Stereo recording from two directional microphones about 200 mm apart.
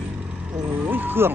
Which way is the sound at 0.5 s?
10° right (ahead or behind).